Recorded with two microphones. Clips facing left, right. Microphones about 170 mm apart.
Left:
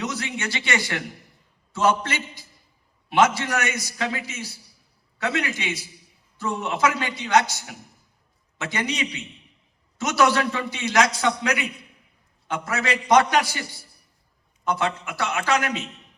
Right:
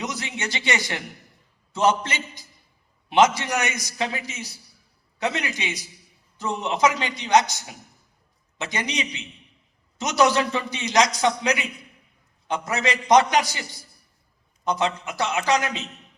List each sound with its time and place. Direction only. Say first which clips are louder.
0.0 s a man's voice: left 1 dB; 20° right (ahead or behind)
8.5 s a man's voice: left 1 dB; 20° right (ahead or behind)
12.5 s a man's voice: right 1 dB; 20° right (ahead or behind)
14.6 s a man's voice: right 1 dB; 20° right (ahead or behind)